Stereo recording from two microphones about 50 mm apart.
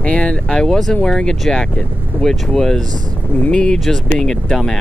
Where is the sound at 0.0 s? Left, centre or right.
Left.